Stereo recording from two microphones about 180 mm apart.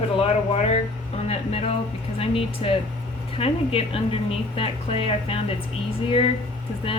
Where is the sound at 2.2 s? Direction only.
30° left (ahead or behind).